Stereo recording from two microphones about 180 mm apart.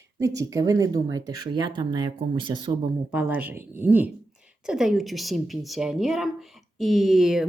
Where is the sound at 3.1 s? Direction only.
10° right (ahead or behind).